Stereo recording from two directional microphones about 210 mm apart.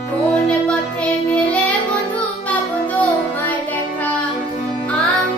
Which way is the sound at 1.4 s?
5° left (ahead or behind).